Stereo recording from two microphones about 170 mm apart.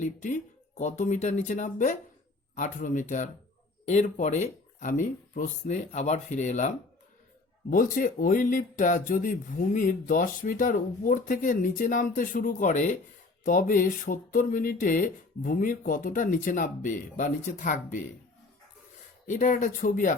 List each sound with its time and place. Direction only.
0.0 s speech: 50° left (ahead or behind)
19.3 s speech: 50° left (ahead or behind)